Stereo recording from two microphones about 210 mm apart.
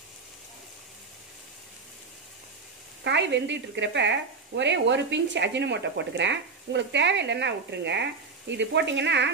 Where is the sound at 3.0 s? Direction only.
55° right (ahead or behind).